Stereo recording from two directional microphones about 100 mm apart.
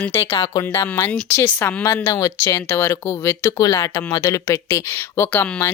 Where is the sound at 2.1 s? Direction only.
35° left (ahead or behind).